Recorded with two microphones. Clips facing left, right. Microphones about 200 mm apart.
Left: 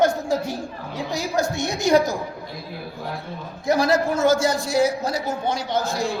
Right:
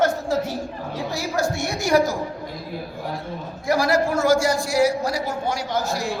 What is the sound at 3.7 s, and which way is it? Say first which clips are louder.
A man's voice: left 1 dB; 20° left (ahead or behind).